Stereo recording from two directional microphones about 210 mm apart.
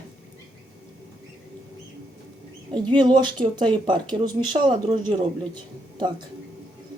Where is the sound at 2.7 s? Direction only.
20° right (ahead or behind).